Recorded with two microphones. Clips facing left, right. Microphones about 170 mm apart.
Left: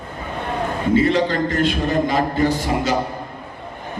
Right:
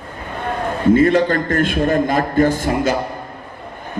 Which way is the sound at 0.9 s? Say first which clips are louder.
Right 1 dB; 50° right (ahead or behind).